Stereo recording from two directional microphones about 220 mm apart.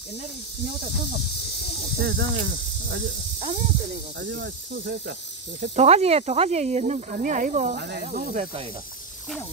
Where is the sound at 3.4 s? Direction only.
30° right (ahead or behind).